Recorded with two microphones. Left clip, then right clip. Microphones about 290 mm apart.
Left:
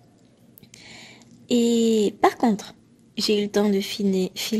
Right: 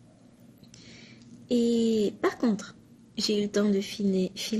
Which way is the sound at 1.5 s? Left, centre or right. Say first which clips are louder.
Left 5 dB; left.